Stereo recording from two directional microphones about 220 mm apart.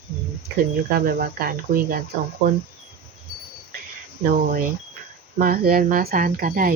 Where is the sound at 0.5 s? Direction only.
40° right (ahead or behind).